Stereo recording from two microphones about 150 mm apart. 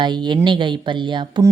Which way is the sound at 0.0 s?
30° right (ahead or behind).